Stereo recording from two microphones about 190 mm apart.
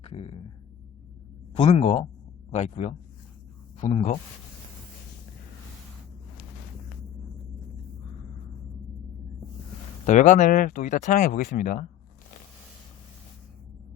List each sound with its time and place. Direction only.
0.0 s a sound: 30° left (ahead or behind)
1.5 s speech: 30° left (ahead or behind)
10.1 s speech: 40° left (ahead or behind)